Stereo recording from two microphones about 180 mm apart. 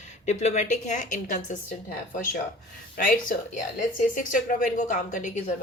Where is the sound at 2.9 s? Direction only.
50° left (ahead or behind).